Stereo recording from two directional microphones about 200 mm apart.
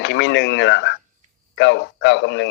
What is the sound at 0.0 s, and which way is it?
Speech, 65° left (ahead or behind).